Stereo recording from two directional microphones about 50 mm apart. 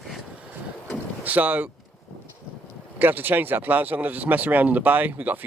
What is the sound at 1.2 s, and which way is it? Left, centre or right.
Speech, right.